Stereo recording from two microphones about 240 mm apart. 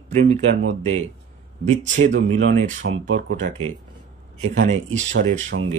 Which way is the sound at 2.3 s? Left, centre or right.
Right.